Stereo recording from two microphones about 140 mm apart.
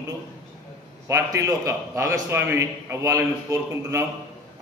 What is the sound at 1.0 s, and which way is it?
A man's voice, 20° right (ahead or behind).